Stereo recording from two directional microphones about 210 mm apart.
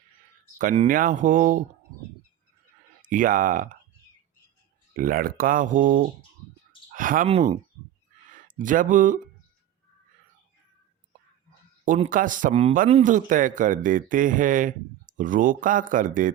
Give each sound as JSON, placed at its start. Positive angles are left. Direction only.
{"t": 0.6, "sound": "speech", "side_deg": -40}
{"t": 3.1, "sound": "speech", "side_deg": -40}
{"t": 4.9, "sound": "speech", "side_deg": -40}
{"t": 7.3, "sound": "speech", "side_deg": -30}
{"t": 8.3, "sound": "speech", "side_deg": -40}
{"t": 11.9, "sound": "speech", "side_deg": -40}